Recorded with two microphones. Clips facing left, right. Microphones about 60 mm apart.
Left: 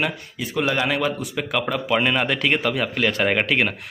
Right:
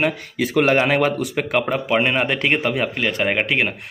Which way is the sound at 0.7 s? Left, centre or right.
Right.